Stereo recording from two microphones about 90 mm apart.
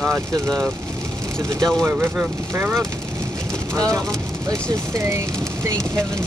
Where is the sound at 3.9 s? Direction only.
35° right (ahead or behind).